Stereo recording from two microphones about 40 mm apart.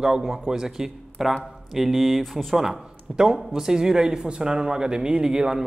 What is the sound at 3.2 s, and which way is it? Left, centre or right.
Speech, centre.